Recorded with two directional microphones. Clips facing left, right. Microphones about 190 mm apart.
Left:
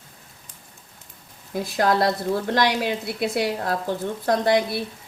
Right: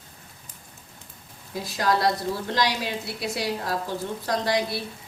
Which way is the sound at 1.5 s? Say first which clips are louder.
Left 4 dB; 55° left (ahead or behind).